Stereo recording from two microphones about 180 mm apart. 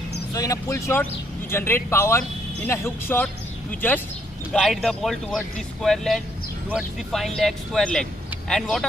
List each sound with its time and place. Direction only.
0.3 s a man's voice: 20° left (ahead or behind)
4.5 s speech: centre (ahead or behind)